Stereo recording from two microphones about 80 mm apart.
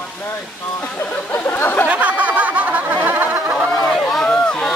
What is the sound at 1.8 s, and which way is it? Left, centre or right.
Snicker, centre.